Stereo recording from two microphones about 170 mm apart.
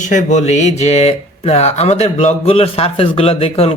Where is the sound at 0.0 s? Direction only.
45° left (ahead or behind).